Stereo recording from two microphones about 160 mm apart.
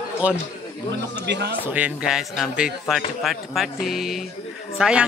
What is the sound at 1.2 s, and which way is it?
Speech, 90° right.